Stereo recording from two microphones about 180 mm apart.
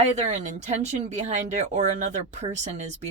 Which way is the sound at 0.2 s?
40° right (ahead or behind).